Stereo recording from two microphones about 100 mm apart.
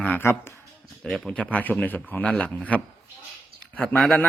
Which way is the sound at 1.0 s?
5° left (ahead or behind).